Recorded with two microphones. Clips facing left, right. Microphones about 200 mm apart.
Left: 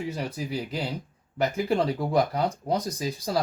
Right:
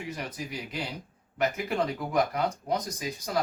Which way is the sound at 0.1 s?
30° left (ahead or behind).